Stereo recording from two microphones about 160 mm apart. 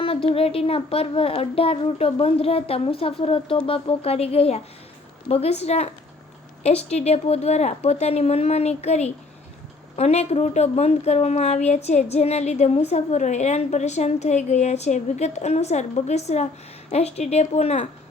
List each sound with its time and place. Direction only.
0.0 s a woman's voice: 35° left (ahead or behind)